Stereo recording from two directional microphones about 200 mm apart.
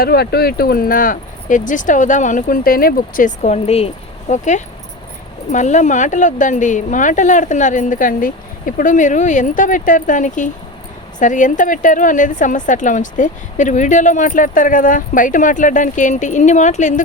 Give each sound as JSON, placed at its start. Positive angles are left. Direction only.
{"t": 0.0, "sound": "speech", "side_deg": 55}